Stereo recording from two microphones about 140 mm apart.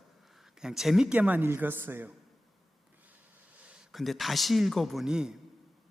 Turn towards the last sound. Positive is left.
turn(degrees=-5)  # may be behind; listen again after turning